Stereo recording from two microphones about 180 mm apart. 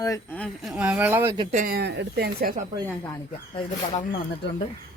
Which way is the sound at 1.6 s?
65° right (ahead or behind).